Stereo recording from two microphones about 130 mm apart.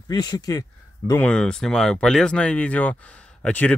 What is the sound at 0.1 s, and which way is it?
Speech, 35° left (ahead or behind).